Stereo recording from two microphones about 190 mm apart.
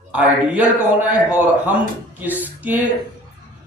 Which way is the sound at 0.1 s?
5° right (ahead or behind).